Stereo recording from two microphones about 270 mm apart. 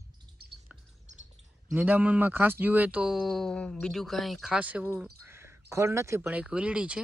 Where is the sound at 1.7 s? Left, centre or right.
Centre.